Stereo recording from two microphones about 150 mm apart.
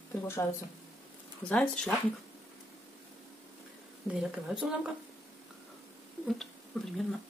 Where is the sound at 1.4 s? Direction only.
5° left (ahead or behind).